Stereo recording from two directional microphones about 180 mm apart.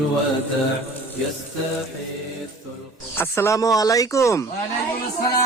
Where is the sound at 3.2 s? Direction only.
15° left (ahead or behind).